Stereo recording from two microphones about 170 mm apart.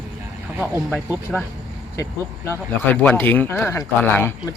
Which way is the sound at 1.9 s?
20° left (ahead or behind).